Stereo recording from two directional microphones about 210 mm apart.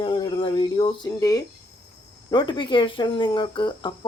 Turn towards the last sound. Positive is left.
turn(degrees=20)  # may be behind; listen again after turning